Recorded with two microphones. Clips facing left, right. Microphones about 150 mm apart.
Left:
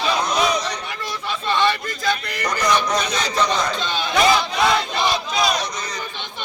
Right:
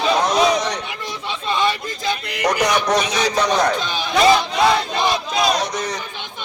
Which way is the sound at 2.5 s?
85° right.